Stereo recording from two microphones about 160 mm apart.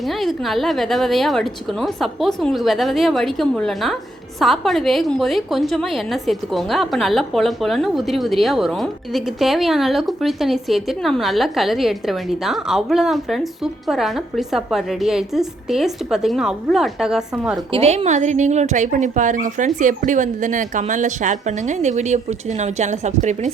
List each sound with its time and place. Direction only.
0.1 s a woman's voice: centre (ahead or behind)
17.7 s speech: 40° right (ahead or behind)